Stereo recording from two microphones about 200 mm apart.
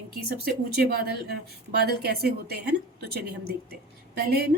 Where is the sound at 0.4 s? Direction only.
50° right (ahead or behind).